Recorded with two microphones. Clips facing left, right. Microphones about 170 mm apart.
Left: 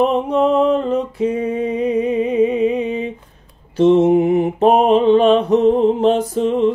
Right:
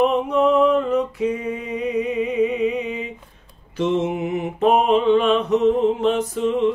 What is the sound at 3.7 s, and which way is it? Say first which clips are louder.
Mantra: left 10 dB; 35° left (ahead or behind).